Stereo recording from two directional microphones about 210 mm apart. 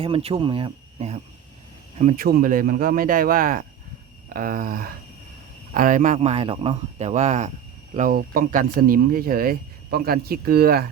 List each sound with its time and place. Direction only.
0.0 s speech: 25° right (ahead or behind)
2.0 s a man's voice: 40° right (ahead or behind)